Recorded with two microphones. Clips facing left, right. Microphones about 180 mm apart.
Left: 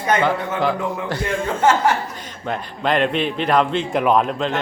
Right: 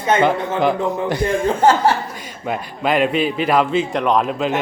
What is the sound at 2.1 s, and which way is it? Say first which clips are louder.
A man's voice: right 2 dB; 10° right (ahead or behind).